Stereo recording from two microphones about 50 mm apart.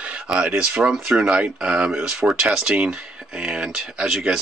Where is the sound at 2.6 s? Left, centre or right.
Right.